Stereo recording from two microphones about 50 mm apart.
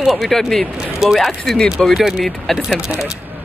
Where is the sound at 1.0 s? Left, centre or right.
Centre.